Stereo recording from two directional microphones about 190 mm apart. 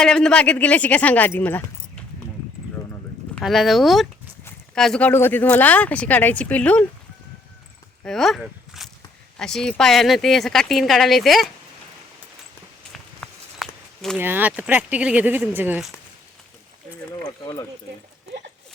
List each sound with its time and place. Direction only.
0.0 s speech: 5° left (ahead or behind)
3.3 s speech: centre (ahead or behind)
8.0 s a sound: centre (ahead or behind)
9.4 s speech: 5° left (ahead or behind)
12.9 s walk: centre (ahead or behind)
14.2 s speech: 10° right (ahead or behind)
17.4 s speech: 20° left (ahead or behind)